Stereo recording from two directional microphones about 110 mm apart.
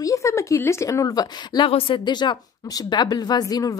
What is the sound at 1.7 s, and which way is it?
Speech, 55° left (ahead or behind).